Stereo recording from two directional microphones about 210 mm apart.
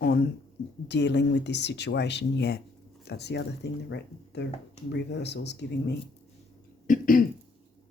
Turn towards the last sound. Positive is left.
turn(degrees=40)  # may be behind; listen again after turning